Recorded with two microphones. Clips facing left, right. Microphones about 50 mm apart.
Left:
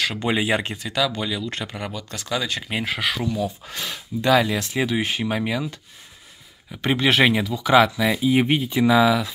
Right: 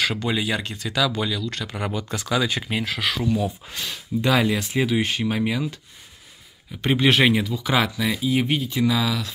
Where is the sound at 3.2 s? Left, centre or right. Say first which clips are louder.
Right 2 dB; centre.